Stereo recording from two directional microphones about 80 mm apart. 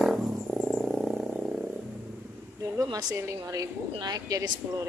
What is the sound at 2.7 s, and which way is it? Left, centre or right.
Speech, right.